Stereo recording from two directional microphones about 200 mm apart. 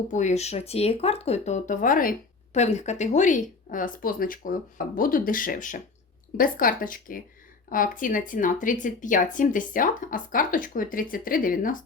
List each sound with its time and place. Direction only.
0.1 s speech: 35° left (ahead or behind)